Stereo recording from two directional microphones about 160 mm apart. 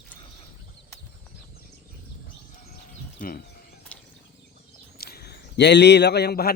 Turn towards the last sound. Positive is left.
turn(degrees=85)